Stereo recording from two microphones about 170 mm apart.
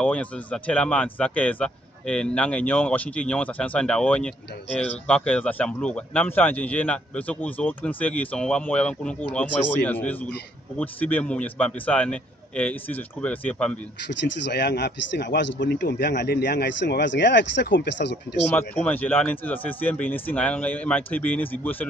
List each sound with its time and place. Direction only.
0.0 s speech: 10° left (ahead or behind)
14.2 s speech: 85° left
18.5 s speech: 10° left (ahead or behind)